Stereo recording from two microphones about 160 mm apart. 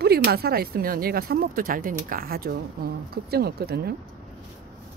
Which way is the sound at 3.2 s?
85° right.